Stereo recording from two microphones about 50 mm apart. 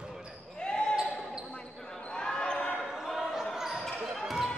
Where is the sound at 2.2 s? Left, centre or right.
Centre.